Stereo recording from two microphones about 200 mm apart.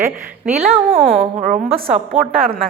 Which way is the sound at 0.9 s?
45° right (ahead or behind).